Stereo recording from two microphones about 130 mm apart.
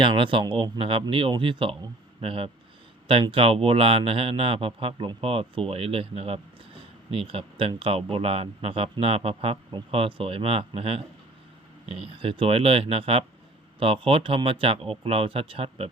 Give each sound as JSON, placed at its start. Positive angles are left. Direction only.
{"t": 0.0, "sound": "speech", "side_deg": -40}